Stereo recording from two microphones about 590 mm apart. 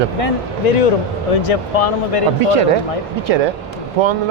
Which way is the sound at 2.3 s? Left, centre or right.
Right.